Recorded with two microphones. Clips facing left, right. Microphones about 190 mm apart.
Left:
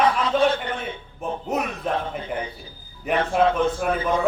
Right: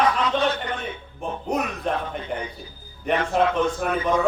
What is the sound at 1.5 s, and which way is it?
A man's voice, 5° left (ahead or behind).